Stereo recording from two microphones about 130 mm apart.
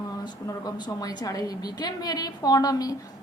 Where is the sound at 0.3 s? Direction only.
30° left (ahead or behind).